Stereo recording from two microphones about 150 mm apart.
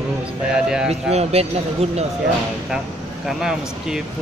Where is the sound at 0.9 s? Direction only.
45° right (ahead or behind).